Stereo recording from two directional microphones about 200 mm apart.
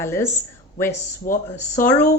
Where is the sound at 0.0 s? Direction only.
10° left (ahead or behind).